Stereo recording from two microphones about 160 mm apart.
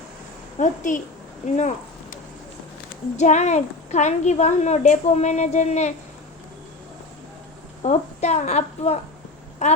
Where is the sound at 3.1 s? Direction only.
45° left (ahead or behind).